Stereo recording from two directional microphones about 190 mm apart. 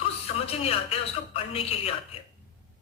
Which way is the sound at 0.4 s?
30° left (ahead or behind).